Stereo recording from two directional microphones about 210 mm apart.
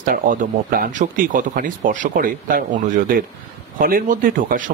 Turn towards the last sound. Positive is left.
turn(degrees=-40)  # may be behind; listen again after turning